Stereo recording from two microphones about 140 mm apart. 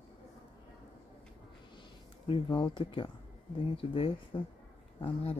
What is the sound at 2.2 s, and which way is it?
Speech, 40° left (ahead or behind).